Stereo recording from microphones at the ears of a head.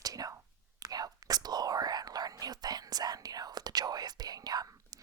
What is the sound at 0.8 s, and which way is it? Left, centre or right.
Whispering, right.